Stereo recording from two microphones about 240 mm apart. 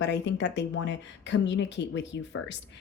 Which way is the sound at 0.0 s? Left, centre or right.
Left.